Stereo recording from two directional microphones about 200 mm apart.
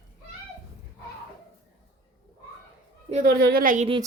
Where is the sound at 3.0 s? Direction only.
35° right (ahead or behind).